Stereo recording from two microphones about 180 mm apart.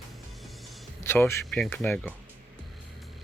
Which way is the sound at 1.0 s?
15° left (ahead or behind).